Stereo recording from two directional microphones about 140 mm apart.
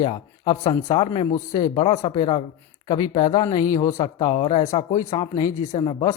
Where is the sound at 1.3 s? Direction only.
25° left (ahead or behind).